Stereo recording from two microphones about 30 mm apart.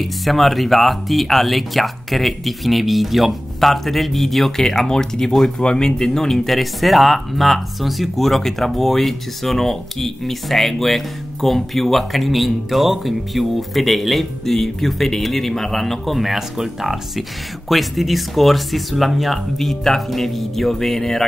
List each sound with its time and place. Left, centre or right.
0.0 s speech: centre
5.6 s speech: left
6.5 s speech: centre
16.2 s speech: centre